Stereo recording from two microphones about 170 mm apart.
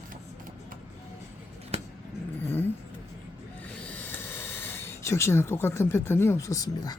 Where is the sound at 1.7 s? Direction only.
40° right (ahead or behind).